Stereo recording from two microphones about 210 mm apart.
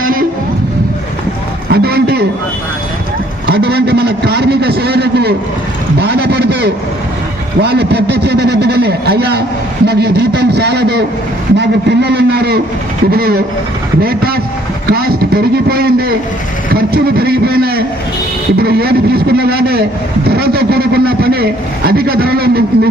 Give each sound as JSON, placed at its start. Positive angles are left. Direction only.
{"t": 0.0, "sound": "vehicle", "side_deg": -40}
{"t": 1.7, "sound": "a sound", "side_deg": -50}
{"t": 3.5, "sound": "a man's voice", "side_deg": -50}